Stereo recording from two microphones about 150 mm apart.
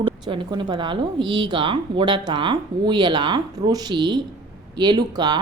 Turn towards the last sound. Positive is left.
turn(degrees=-30)  # may be behind; listen again after turning